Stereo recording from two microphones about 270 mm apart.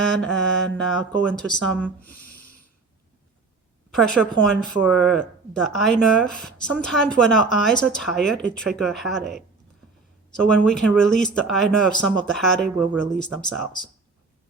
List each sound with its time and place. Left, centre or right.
0.1 s speech: centre
2.3 s snort: left
3.9 s speech: centre
10.4 s speech: centre